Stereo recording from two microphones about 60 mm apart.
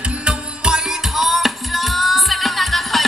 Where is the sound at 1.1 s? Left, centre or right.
Centre.